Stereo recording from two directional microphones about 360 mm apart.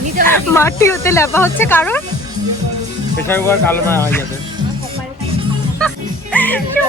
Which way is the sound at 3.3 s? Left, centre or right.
Centre.